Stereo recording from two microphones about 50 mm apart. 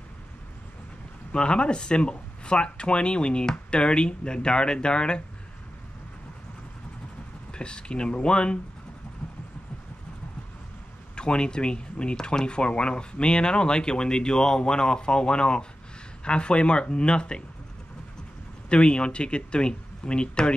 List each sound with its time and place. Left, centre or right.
1.3 s speech: centre
7.5 s speech: centre
9.2 s a sound: centre
11.1 s speech: centre
18.7 s speech: centre